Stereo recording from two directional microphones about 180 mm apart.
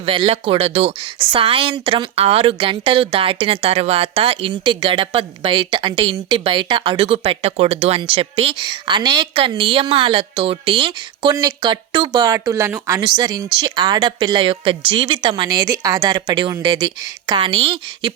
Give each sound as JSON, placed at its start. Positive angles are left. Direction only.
{"t": 0.0, "sound": "speech", "side_deg": -30}